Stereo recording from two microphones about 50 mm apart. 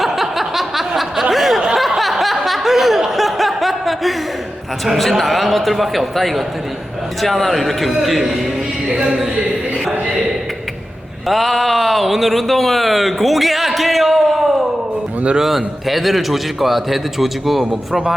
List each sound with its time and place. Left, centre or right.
0.0 s a sound: centre
2.0 s chuckle: centre
4.9 s a man's voice: centre
8.9 s music: centre
11.3 s a man's voice: centre
17.7 s speech: centre